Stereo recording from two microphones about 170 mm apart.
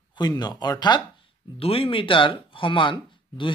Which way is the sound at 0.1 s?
25° left (ahead or behind).